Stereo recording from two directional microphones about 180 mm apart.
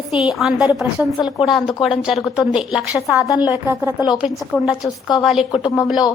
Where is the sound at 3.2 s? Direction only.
20° left (ahead or behind).